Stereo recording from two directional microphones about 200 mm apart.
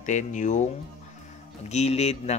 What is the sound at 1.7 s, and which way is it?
Speech, 35° left (ahead or behind).